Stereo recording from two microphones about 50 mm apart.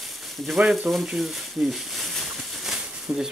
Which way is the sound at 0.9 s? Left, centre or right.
Right.